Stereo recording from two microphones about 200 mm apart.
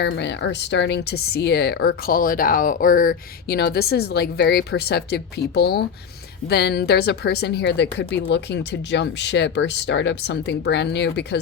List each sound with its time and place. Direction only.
0.0 s speech: 60° left (ahead or behind)